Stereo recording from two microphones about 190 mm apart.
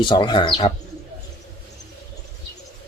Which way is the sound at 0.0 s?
25° left (ahead or behind).